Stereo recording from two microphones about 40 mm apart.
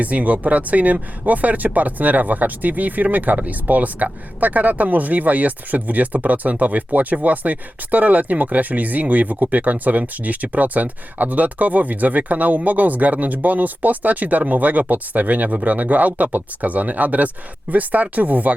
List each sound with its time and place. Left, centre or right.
0.0 s speech: right